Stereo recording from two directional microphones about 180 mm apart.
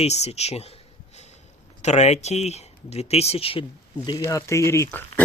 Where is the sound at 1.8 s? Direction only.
40° left (ahead or behind).